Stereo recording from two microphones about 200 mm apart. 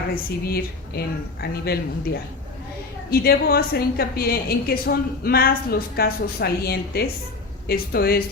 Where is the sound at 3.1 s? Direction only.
50° left (ahead or behind).